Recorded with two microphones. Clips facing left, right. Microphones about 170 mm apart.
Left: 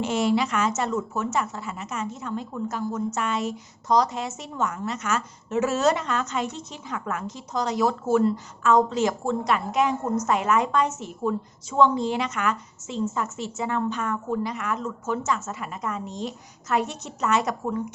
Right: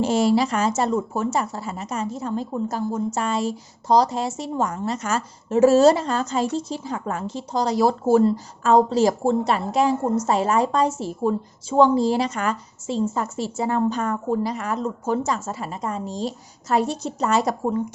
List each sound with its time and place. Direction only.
0.0 s a woman's voice: 35° right (ahead or behind)